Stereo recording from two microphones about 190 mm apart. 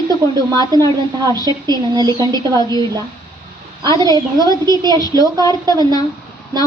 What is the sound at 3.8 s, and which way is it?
A woman's voice, 20° right (ahead or behind).